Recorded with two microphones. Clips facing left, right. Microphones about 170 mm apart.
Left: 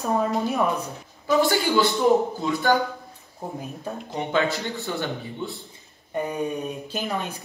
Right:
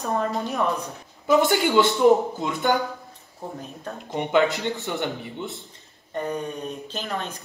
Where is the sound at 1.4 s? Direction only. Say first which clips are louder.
Left 1 dB; 20° right (ahead or behind).